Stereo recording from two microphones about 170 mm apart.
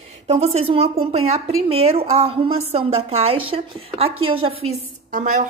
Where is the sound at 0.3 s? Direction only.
35° right (ahead or behind).